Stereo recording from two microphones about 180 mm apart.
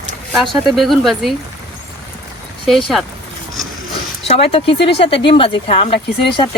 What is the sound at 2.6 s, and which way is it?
Speech, centre (ahead or behind).